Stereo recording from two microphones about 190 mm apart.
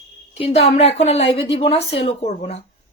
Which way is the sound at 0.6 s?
35° left (ahead or behind).